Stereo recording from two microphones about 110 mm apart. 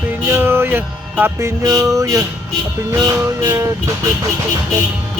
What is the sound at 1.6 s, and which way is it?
Speech, 30° right (ahead or behind).